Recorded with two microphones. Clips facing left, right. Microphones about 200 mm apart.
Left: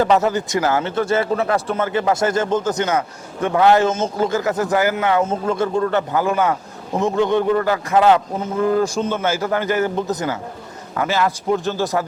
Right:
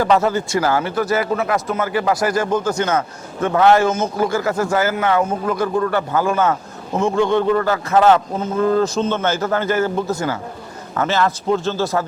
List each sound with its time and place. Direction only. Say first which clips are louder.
0.0 s a man's voice: even; 20° left (ahead or behind)